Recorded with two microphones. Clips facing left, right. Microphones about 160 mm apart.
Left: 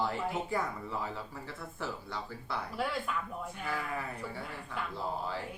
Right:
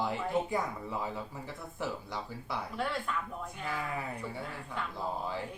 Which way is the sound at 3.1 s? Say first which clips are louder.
Even; 5° left (ahead or behind).